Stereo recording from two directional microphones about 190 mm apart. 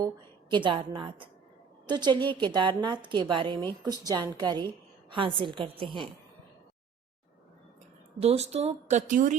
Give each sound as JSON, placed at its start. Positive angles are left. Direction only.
{"t": 0.5, "sound": "a woman's voice", "side_deg": -25}
{"t": 8.2, "sound": "speech", "side_deg": -35}